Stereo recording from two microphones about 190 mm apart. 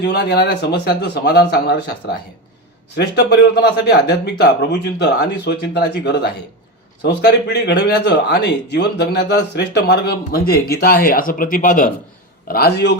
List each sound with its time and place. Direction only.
0.0 s speech: 60° left (ahead or behind)
2.9 s speech: 60° left (ahead or behind); by 11.9 s 45° left (ahead or behind)
12.5 s speech: 55° left (ahead or behind)